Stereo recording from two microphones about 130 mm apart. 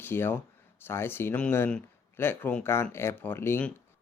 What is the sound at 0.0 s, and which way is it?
Speech, 15° left (ahead or behind).